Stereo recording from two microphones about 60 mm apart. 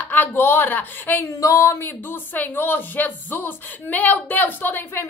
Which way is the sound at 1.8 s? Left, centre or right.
Left.